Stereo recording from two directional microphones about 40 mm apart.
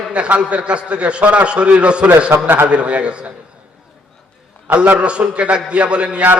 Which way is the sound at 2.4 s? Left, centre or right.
Right.